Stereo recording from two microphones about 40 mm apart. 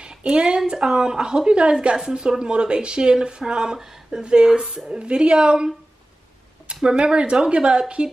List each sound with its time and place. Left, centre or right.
0.0 s a sound: right
0.7 s speech: centre
6.7 s speech: right